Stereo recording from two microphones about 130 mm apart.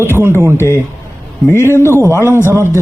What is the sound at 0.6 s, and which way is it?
Speech, 20° left (ahead or behind).